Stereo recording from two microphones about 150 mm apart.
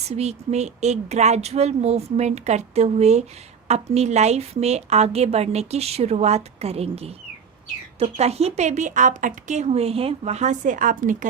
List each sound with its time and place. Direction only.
0.1 s a woman's voice: 45° right (ahead or behind)